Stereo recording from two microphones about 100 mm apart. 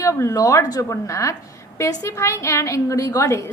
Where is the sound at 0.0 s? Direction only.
30° left (ahead or behind).